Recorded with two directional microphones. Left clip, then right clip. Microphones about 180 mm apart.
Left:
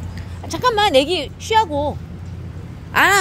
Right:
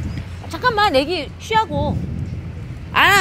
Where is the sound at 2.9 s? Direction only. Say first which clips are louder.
Right 1 dB; 20° left (ahead or behind).